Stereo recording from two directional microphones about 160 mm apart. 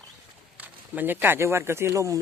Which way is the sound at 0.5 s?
10° right (ahead or behind).